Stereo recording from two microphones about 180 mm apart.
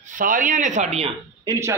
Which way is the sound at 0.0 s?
50° right (ahead or behind).